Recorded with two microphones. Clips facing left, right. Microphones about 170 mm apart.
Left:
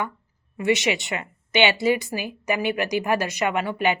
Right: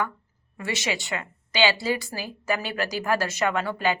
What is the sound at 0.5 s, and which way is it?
Speech, 20° left (ahead or behind).